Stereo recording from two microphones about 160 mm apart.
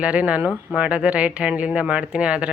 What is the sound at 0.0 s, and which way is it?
Speech, 5° right (ahead or behind).